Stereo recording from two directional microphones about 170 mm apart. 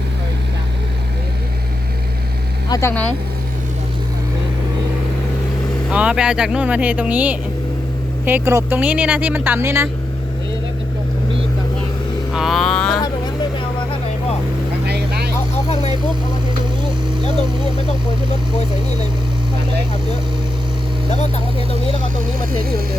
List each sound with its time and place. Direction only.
2.6 s speech: 20° left (ahead or behind)
5.9 s speech: 5° right (ahead or behind)
12.3 s vehicle: centre (ahead or behind)
14.8 s vehicle: 75° right (ahead or behind)
18.5 s speech: 40° left (ahead or behind)
21.2 s speech: 40° left (ahead or behind)